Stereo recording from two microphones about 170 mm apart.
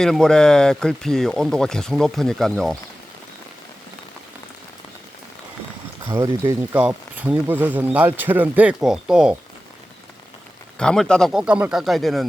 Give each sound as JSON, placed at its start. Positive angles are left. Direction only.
{"t": 0.0, "sound": "speech", "side_deg": 5}
{"t": 6.1, "sound": "speech", "side_deg": -25}
{"t": 6.7, "sound": "speech", "side_deg": -5}
{"t": 10.8, "sound": "speech", "side_deg": 5}